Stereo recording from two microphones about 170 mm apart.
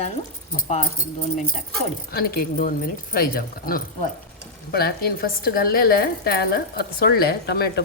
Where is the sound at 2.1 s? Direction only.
60° left (ahead or behind).